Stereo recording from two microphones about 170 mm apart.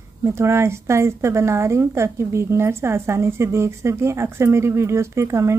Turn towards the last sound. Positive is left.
turn(degrees=-15)  # may be behind; listen again after turning